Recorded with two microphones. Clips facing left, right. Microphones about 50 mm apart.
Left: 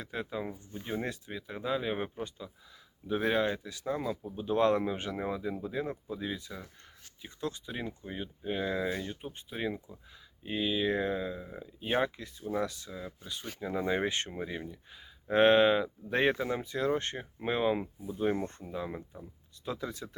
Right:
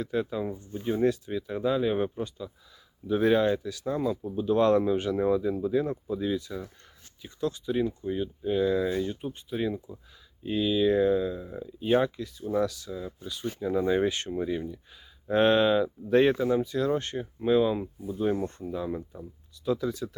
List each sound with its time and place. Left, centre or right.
0.0 s speech: centre
3.8 s speech: centre; by 20.1 s left